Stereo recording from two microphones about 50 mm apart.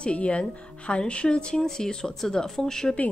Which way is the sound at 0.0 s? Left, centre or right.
Left.